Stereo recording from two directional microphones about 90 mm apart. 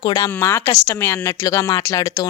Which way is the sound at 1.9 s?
45° left (ahead or behind).